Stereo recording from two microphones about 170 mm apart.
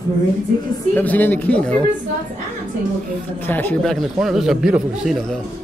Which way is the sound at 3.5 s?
10° left (ahead or behind).